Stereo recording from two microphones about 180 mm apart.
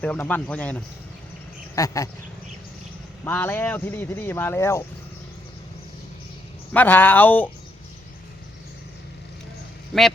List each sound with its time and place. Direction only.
0.0 s speech: 10° left (ahead or behind)
3.2 s speech: 10° left (ahead or behind)
6.7 s speech: 10° left (ahead or behind)